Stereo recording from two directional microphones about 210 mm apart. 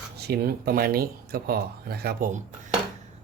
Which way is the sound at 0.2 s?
50° right (ahead or behind).